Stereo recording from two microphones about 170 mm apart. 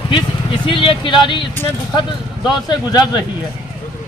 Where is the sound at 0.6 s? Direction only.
30° left (ahead or behind).